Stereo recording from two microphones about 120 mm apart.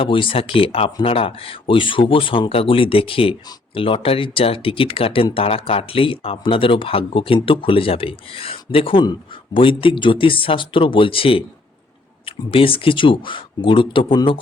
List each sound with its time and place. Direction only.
0.0 s speech: 45° left (ahead or behind)